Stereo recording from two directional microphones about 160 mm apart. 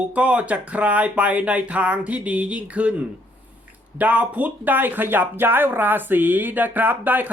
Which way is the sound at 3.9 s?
10° right (ahead or behind).